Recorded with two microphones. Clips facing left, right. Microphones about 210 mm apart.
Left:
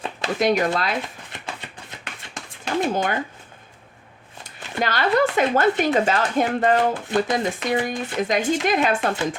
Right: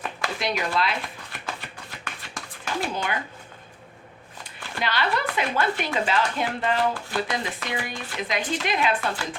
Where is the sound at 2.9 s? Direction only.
45° left (ahead or behind).